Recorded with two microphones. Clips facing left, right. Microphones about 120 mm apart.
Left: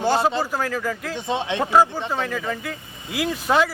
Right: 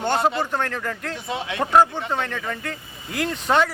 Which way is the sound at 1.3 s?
25° left (ahead or behind).